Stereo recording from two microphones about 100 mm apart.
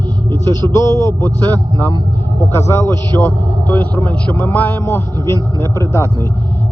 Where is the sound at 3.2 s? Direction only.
20° left (ahead or behind).